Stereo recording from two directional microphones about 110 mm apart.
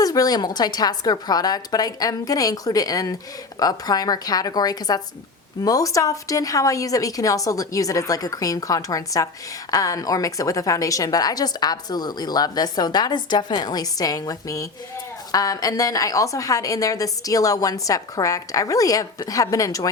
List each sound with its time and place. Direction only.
0.0 s a woman's voice: 35° left (ahead or behind)